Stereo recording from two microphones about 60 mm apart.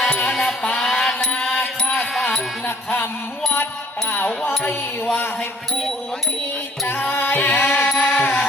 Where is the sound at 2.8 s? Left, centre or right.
Left.